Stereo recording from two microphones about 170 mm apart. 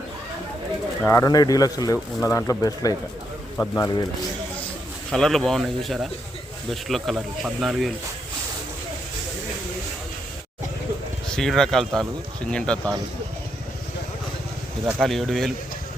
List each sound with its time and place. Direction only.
1.0 s speech: 20° left (ahead or behind)
5.1 s speech: centre (ahead or behind)
11.3 s speech: 5° left (ahead or behind)
14.8 s speech: centre (ahead or behind)